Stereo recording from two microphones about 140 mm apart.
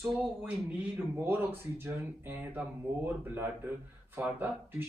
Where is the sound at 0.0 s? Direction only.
10° right (ahead or behind).